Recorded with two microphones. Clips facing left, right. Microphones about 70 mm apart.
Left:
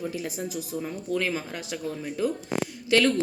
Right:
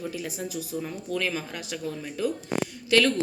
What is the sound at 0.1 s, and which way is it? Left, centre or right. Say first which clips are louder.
A woman's voice: left 1 dB; centre.